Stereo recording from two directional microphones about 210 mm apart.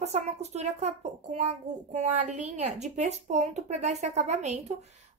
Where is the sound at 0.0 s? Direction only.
30° right (ahead or behind).